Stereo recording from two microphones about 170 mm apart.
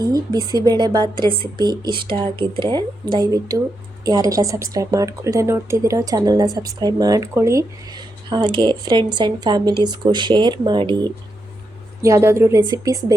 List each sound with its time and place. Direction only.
0.0 s a woman's voice: 20° right (ahead or behind)